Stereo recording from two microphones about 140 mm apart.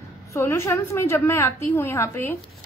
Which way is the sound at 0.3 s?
20° left (ahead or behind).